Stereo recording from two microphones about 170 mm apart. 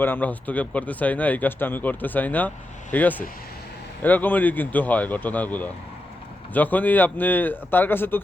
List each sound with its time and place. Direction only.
0.0 s speech: 10° left (ahead or behind)